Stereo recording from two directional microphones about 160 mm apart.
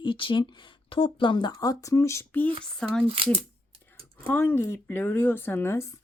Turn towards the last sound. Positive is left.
turn(degrees=15)  # may be behind; listen again after turning